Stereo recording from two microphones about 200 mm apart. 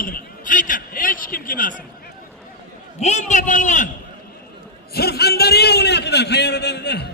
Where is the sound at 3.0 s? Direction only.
35° left (ahead or behind).